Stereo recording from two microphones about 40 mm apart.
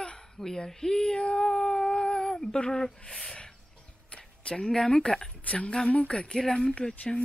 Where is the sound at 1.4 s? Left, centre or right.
Centre.